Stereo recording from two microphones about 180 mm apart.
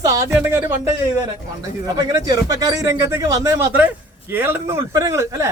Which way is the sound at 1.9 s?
20° right (ahead or behind).